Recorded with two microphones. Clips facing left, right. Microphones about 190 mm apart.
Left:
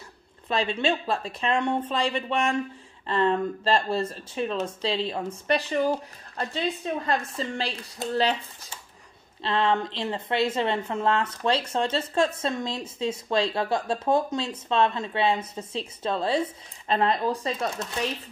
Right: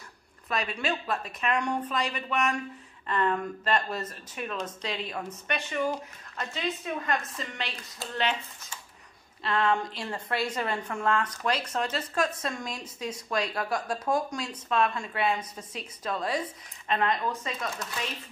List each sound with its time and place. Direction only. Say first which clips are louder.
0.5 s a woman's voice: left 5 dB; 25° left (ahead or behind)
9.4 s a woman's voice: left 2 dB; 25° left (ahead or behind)